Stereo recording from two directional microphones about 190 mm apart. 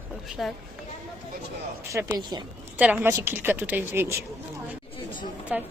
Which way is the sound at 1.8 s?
15° right (ahead or behind).